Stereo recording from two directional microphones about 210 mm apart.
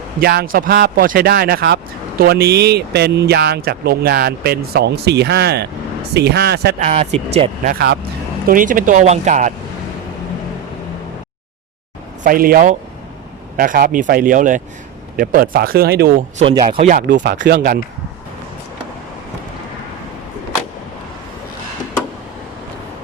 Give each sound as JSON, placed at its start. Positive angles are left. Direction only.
{"t": 0.2, "sound": "speech", "side_deg": -45}
{"t": 7.7, "sound": "speech", "side_deg": -50}
{"t": 12.2, "sound": "speech", "side_deg": -45}
{"t": 16.4, "sound": "speech", "side_deg": -25}
{"t": 16.7, "sound": "speech", "side_deg": -35}
{"t": 17.4, "sound": "speech", "side_deg": -45}